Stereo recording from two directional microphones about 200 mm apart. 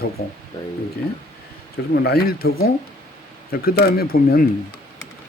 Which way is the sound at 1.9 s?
55° left (ahead or behind).